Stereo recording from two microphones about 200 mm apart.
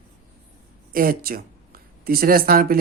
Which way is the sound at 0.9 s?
45° right (ahead or behind).